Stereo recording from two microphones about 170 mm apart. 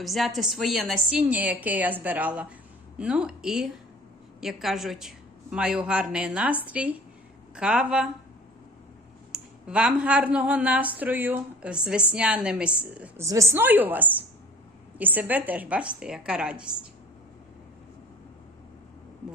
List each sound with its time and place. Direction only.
0.0 s a woman's voice: centre (ahead or behind)
9.3 s speech: 5° right (ahead or behind)